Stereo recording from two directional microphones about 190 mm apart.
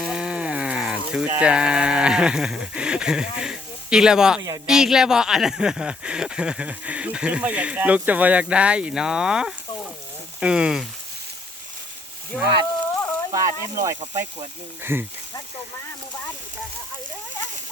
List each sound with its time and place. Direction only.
0.0 s a sound: 5° right (ahead or behind)
1.4 s speech: 5° right (ahead or behind)
12.3 s speech: 5° left (ahead or behind)
13.3 s speech: 15° right (ahead or behind)